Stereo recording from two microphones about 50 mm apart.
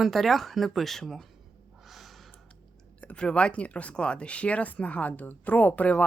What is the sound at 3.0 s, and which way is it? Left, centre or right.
Speech, centre.